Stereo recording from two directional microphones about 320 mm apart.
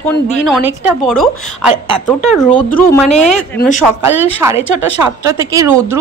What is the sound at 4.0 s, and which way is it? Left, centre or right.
Speech, centre.